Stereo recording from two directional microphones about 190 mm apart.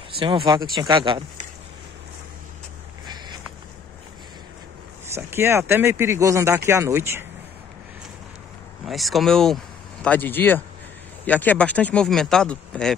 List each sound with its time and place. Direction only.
0.2 s speech: 25° right (ahead or behind)
5.1 s speech: 15° right (ahead or behind)
8.8 s speech: centre (ahead or behind)